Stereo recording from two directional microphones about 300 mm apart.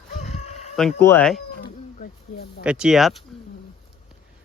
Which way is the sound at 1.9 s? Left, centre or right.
Left.